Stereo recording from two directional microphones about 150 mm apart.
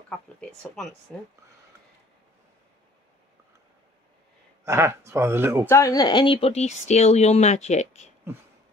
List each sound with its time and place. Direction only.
1.1 s speech: centre (ahead or behind)
4.6 s speech: 15° right (ahead or behind)
5.7 s speech: 20° left (ahead or behind); by 8.1 s 50° left (ahead or behind)